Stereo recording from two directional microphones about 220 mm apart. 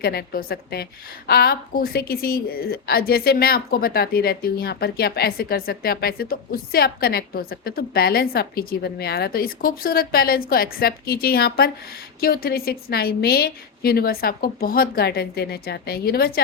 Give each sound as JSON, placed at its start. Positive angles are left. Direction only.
{"t": 0.0, "sound": "a woman's voice", "side_deg": 45}